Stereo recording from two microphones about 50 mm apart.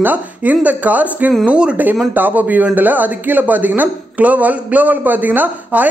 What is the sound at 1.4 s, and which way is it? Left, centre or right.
Speech, centre.